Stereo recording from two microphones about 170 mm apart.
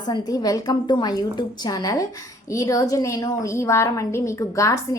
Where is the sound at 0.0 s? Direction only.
25° left (ahead or behind).